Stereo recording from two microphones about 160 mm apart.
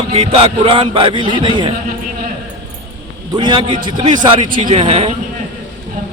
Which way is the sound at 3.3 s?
30° right (ahead or behind).